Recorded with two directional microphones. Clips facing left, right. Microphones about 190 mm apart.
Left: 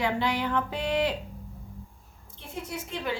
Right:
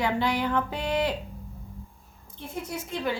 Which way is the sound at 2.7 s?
45° right (ahead or behind).